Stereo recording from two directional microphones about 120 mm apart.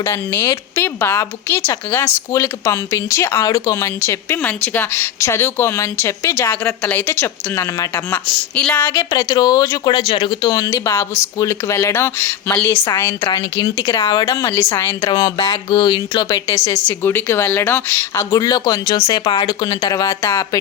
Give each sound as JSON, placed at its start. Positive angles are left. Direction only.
{"t": 0.0, "sound": "a woman's voice", "side_deg": 20}
{"t": 2.3, "sound": "speech", "side_deg": 25}
{"t": 8.1, "sound": "a woman's voice", "side_deg": 10}
{"t": 8.9, "sound": "speech", "side_deg": 30}
{"t": 10.1, "sound": "speech", "side_deg": 45}
{"t": 13.2, "sound": "speech", "side_deg": 35}
{"t": 14.0, "sound": "speech", "side_deg": 40}
{"t": 14.3, "sound": "speech", "side_deg": 20}
{"t": 15.0, "sound": "speech", "side_deg": 35}
{"t": 16.6, "sound": "speech", "side_deg": 20}
{"t": 18.3, "sound": "speech", "side_deg": 30}